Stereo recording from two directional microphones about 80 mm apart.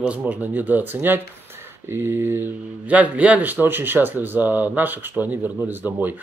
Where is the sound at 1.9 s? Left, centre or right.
Right.